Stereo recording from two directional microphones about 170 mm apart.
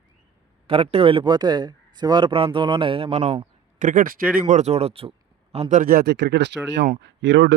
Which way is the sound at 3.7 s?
50° right (ahead or behind).